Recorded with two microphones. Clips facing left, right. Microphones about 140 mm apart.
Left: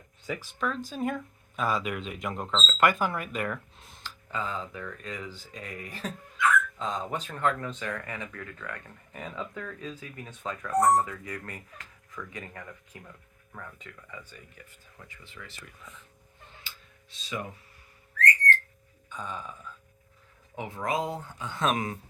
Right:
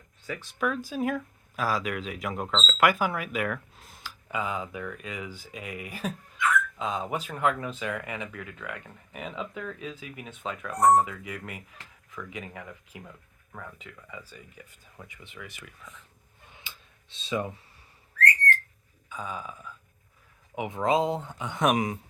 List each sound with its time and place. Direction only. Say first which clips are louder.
0.3 s speech: left 2 dB; 5° left (ahead or behind)
0.6 s speech: right 3 dB; 10° right (ahead or behind)
16.5 s tick-tock: right 2 dB; 20° right (ahead or behind)
19.0 s a sound: right 2 dB; 5° right (ahead or behind)
19.7 s burping: right 1 dB; 10° right (ahead or behind)
20.6 s speech: right 5 dB; 20° right (ahead or behind)